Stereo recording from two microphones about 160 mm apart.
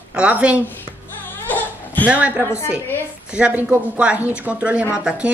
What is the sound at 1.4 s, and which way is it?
Crying, 10° left (ahead or behind).